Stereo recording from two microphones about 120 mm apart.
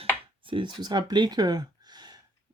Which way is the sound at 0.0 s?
45° right (ahead or behind).